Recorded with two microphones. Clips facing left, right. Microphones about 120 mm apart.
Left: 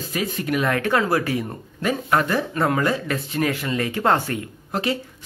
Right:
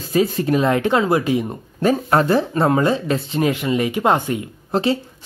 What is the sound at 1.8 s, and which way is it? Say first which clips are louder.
Speech: right 5 dB; 30° right (ahead or behind).